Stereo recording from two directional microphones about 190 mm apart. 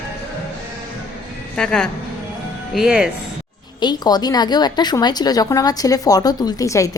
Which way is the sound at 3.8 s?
20° left (ahead or behind).